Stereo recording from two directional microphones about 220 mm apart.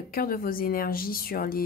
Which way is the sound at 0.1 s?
40° left (ahead or behind).